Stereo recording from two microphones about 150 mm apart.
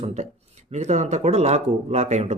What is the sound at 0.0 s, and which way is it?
Speech, 50° right (ahead or behind).